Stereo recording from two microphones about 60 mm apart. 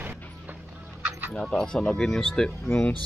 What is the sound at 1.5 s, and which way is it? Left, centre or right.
Speech, centre.